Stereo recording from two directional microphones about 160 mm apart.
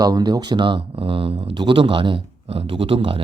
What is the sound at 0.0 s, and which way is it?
Speech, 25° right (ahead or behind).